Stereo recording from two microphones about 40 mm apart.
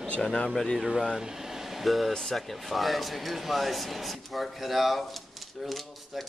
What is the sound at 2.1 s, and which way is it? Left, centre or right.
Speech, centre.